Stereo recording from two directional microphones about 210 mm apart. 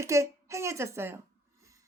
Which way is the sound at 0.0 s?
15° right (ahead or behind).